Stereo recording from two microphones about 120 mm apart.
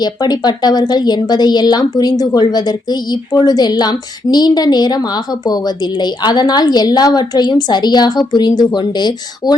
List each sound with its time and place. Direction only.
0.0 s a woman's voice: 35° left (ahead or behind)